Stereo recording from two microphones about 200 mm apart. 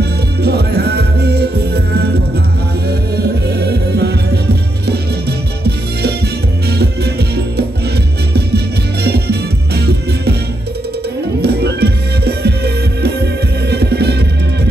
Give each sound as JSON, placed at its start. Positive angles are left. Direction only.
{"t": 0.0, "sound": "music", "side_deg": -55}
{"t": 9.0, "sound": "music", "side_deg": -55}
{"t": 11.4, "sound": "music", "side_deg": -55}